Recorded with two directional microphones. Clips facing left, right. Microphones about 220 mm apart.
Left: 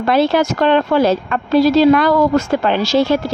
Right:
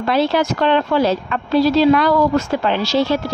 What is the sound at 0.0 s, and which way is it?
Speech, 50° left (ahead or behind).